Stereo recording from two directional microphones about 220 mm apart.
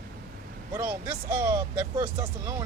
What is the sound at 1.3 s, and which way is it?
Speech, 10° right (ahead or behind).